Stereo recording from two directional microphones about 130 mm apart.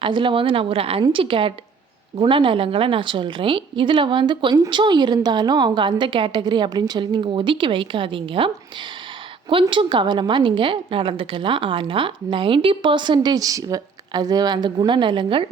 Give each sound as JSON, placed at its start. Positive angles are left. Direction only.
{"t": 0.0, "sound": "a woman's voice", "side_deg": -40}
{"t": 9.5, "sound": "a woman's voice", "side_deg": -40}